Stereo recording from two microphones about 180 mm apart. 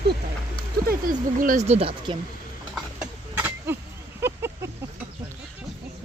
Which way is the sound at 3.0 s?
10° right (ahead or behind).